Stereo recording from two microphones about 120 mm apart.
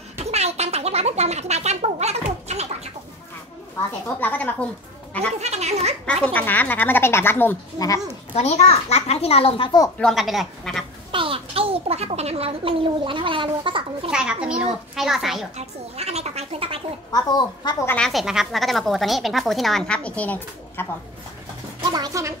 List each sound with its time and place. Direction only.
0.2 s a sound: 65° right (ahead or behind)
4.2 s speech: 15° left (ahead or behind)
5.4 s speech: 65° right (ahead or behind)
6.2 s speech: 15° left (ahead or behind)
8.4 s a child's voice: 60° left (ahead or behind)
9.9 s a woman's voice: centre (ahead or behind)
11.1 s a child's voice: 45° right (ahead or behind)
14.1 s speech: 5° right (ahead or behind)
15.5 s speech: 60° right (ahead or behind)
17.1 s a woman's voice: 35° left (ahead or behind)
17.8 s speech: 10° left (ahead or behind)
18.1 s speech: 5° right (ahead or behind); by 20.8 s 15° left (ahead or behind)
21.9 s a woman's voice: 30° right (ahead or behind)